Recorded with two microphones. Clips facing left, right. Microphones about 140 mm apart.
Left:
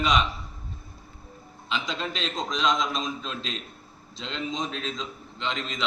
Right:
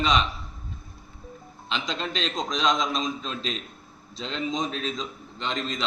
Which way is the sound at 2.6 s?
Centre (ahead or behind).